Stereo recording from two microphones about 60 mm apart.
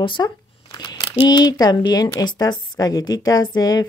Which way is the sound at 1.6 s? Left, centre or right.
Left.